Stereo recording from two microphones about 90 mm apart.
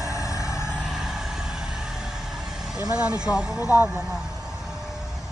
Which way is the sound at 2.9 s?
10° right (ahead or behind).